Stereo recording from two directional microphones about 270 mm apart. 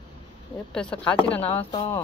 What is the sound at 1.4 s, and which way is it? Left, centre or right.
Speech, left.